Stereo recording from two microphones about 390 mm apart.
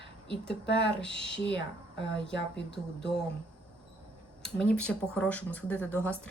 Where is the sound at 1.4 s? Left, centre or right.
Left.